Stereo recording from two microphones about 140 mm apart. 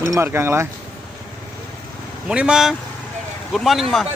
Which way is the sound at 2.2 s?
5° right (ahead or behind).